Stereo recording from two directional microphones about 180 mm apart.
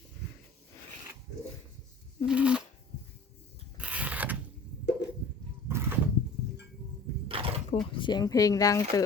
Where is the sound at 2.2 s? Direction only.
5° right (ahead or behind).